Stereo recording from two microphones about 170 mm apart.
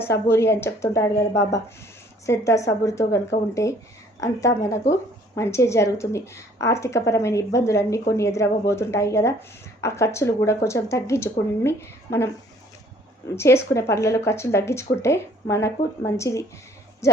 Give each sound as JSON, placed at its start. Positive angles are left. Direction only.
{"t": 0.0, "sound": "a woman's voice", "side_deg": 15}
{"t": 13.3, "sound": "a woman's voice", "side_deg": 15}